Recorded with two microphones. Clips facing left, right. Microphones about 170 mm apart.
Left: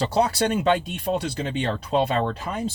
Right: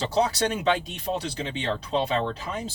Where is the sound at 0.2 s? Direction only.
55° left (ahead or behind).